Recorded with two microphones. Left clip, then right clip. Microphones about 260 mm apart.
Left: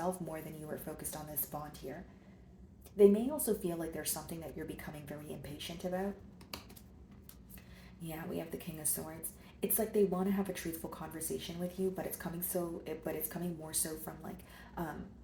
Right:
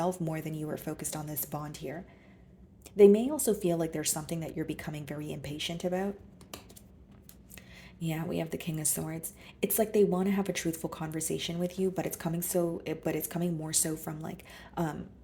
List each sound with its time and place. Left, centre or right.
0.0 s speech: right
2.9 s speech: right
8.0 s speech: right